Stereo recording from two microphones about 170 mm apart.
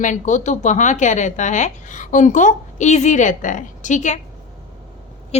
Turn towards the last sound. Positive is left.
turn(degrees=45)  # may be behind; listen again after turning